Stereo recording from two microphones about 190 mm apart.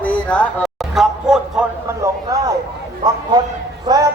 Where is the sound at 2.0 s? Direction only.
20° right (ahead or behind).